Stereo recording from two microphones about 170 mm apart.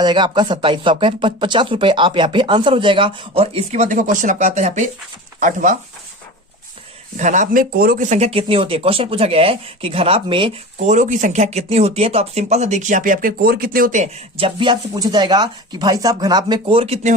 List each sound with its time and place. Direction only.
0.0 s speech: 25° right (ahead or behind); by 5.7 s 50° right (ahead or behind)
7.2 s speech: 45° right (ahead or behind); by 10.5 s 30° right (ahead or behind)
10.8 s speech: 45° right (ahead or behind)
14.3 s speech: 30° right (ahead or behind)